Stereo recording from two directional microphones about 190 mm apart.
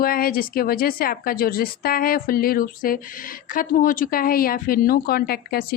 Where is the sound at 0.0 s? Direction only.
50° left (ahead or behind).